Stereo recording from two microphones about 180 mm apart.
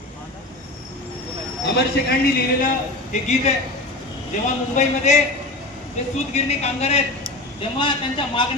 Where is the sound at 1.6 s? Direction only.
70° left (ahead or behind).